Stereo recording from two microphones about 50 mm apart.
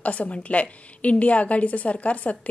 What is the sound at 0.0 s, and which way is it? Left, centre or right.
A woman's voice, left.